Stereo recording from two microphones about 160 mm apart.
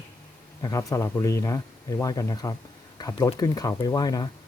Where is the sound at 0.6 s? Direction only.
20° left (ahead or behind).